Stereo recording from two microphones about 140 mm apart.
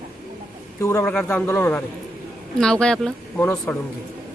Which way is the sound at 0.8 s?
20° left (ahead or behind).